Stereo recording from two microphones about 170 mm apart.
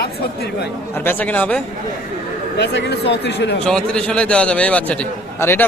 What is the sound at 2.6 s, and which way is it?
Speech, 90° left.